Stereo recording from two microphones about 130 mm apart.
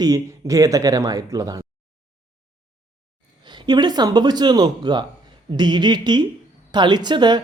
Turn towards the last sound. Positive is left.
turn(degrees=-35)  # may be behind; listen again after turning